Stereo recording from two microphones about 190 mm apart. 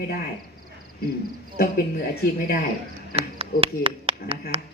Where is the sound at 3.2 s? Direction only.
30° right (ahead or behind).